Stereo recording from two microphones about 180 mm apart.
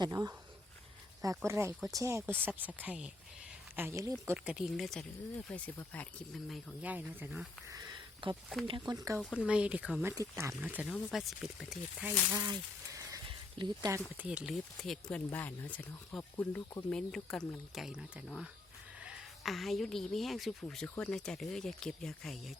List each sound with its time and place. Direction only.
0.0 s speech: 20° right (ahead or behind)
1.5 s speech: 15° right (ahead or behind); by 6.7 s 5° left (ahead or behind)
6.8 s speech: 10° right (ahead or behind)
9.1 s speech: centre (ahead or behind)
12.3 s a sound: 20° right (ahead or behind)
14.2 s a woman's voice: 5° right (ahead or behind)